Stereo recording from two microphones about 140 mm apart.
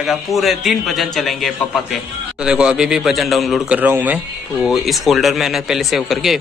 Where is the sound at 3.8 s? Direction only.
15° right (ahead or behind).